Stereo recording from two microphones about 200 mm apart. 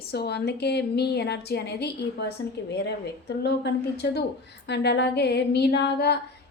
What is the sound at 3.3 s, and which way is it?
A woman's voice, 55° left (ahead or behind).